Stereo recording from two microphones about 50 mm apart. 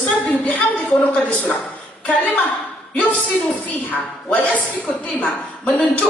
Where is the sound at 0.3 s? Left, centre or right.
Left.